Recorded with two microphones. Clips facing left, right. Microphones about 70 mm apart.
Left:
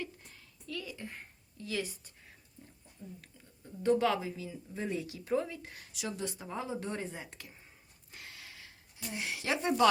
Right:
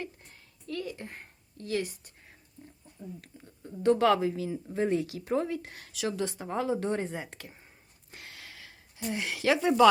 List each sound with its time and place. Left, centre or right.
0.7 s speech: right
3.2 s speech: right
3.8 s a woman's voice: right
8.1 s a sound: right
9.4 s speech: right